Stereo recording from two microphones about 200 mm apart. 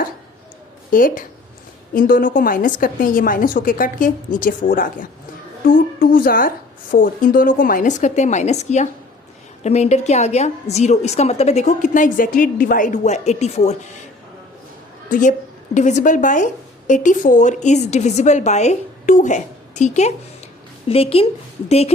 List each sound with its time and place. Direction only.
0.9 s a woman's voice: 40° left (ahead or behind)
15.1 s a woman's voice: 40° left (ahead or behind)